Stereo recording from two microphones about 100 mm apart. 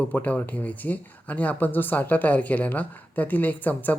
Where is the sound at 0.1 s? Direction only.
20° left (ahead or behind).